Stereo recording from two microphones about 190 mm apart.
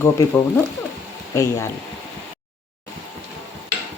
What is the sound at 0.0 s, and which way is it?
Speech, 10° left (ahead or behind).